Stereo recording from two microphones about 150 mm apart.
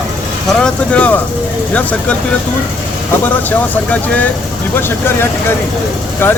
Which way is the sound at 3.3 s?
10° left (ahead or behind).